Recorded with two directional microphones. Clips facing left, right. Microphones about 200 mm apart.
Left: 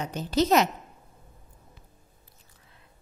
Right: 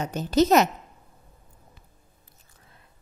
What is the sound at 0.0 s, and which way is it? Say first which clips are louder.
Speech: right 4 dB; 45° right (ahead or behind).